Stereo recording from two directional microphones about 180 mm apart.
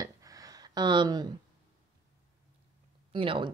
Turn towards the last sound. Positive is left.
turn(degrees=-30)  # may be behind; listen again after turning